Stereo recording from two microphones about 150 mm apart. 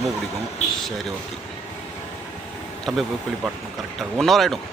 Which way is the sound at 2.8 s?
Centre (ahead or behind).